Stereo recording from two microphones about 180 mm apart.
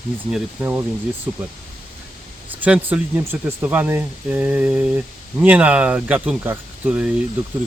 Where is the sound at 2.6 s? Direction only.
10° right (ahead or behind).